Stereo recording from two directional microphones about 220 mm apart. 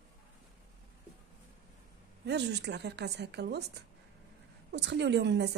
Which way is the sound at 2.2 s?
50° right (ahead or behind).